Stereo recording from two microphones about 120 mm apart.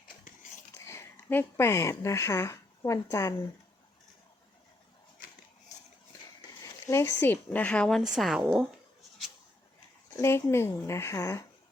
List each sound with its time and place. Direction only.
0.9 s speech: 20° left (ahead or behind)
6.6 s a woman's voice: 25° left (ahead or behind); by 8.6 s 5° right (ahead or behind)
10.2 s speech: 25° left (ahead or behind)